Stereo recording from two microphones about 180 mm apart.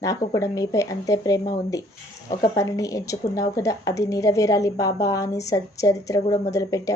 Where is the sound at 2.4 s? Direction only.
20° left (ahead or behind).